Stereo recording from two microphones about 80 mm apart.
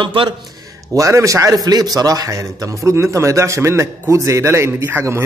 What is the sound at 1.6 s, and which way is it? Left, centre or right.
A man's voice, right.